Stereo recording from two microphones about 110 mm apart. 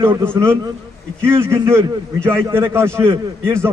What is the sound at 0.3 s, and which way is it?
A man's voice, 20° right (ahead or behind).